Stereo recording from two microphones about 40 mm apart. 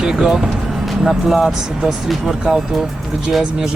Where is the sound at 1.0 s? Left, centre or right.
Centre.